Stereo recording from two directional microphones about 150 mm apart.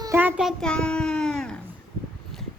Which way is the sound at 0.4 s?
5° left (ahead or behind).